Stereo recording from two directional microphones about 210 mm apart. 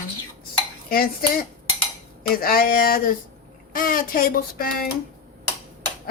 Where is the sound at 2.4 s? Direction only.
45° left (ahead or behind).